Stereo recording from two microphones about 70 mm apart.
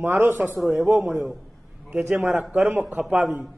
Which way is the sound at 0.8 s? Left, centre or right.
Centre.